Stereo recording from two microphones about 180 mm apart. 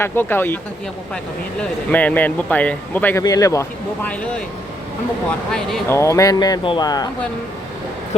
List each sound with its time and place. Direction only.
0.0 s speech: 10° left (ahead or behind)
5.5 s speech: 5° left (ahead or behind)
5.9 s speech: 15° left (ahead or behind)